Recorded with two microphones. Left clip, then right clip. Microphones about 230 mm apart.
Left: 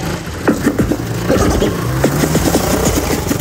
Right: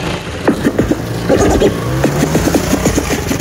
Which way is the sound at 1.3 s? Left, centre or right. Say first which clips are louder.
Right 4 dB; right.